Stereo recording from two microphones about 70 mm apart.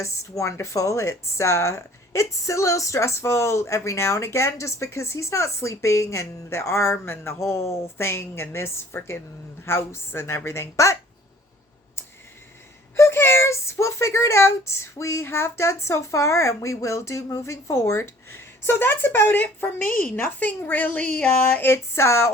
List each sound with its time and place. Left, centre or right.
0.0 s a woman's voice: left
13.0 s speech: left; by 21.4 s centre
21.4 s a woman's voice: left